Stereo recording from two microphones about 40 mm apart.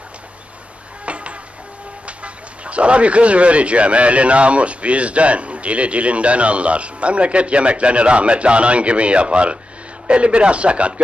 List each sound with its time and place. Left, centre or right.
1.0 s music: right
2.0 s a man's voice: right